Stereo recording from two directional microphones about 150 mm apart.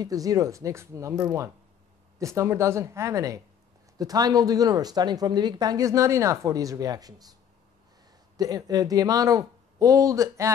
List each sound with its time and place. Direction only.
0.0 s speech: 25° right (ahead or behind)
8.4 s speech: 25° right (ahead or behind)